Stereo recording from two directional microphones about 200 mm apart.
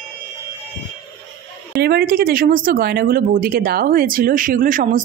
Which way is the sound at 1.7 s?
50° right (ahead or behind).